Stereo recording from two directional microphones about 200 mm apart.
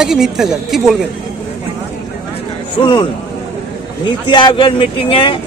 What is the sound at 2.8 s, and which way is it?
Speech, 25° left (ahead or behind).